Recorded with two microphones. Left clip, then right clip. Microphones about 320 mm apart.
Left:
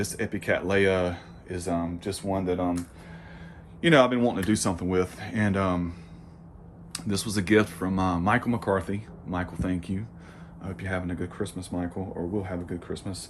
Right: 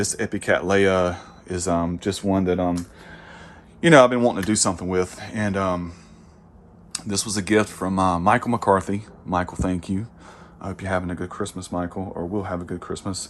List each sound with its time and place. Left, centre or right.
0.0 s speech: centre; by 2.7 s right
3.8 s speech: centre
6.9 s speech: centre